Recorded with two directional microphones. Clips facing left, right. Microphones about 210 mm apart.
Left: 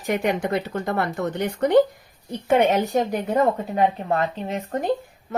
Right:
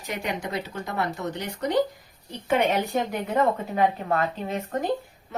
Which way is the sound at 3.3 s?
30° left (ahead or behind).